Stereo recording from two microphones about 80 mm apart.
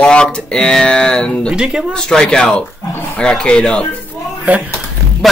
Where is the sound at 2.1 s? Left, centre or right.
Centre.